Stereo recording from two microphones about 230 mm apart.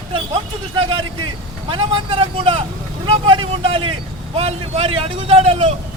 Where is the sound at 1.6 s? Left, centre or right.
Right.